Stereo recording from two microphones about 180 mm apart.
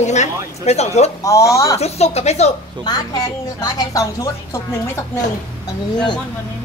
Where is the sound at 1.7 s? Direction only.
35° left (ahead or behind).